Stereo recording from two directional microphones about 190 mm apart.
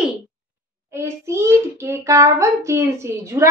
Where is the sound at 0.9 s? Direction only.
15° right (ahead or behind).